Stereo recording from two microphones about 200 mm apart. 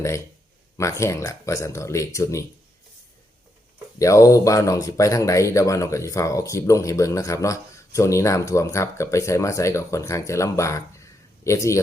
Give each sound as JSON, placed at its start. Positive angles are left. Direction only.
{"t": 0.8, "sound": "speech", "side_deg": 15}
{"t": 3.9, "sound": "speech", "side_deg": 15}